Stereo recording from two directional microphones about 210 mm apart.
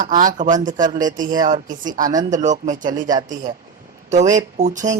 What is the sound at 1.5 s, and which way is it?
A man's voice, 35° right (ahead or behind).